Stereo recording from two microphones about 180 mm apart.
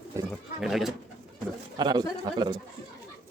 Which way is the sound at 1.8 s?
25° right (ahead or behind).